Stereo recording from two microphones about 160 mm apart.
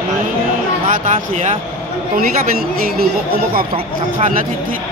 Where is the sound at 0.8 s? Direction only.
50° right (ahead or behind).